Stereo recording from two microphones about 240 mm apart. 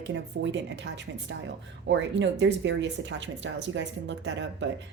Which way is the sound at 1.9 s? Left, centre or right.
Right.